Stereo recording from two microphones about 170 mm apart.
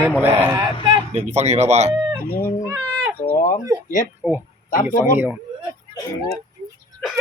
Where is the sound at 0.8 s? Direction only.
40° right (ahead or behind).